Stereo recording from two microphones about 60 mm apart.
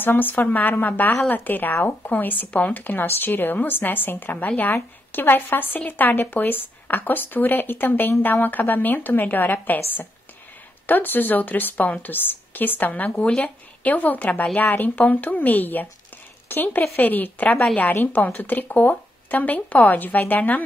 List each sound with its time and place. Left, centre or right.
0.0 s a woman's voice: left